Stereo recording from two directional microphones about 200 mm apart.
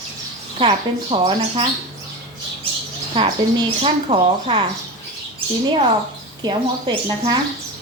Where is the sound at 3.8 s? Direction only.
30° right (ahead or behind).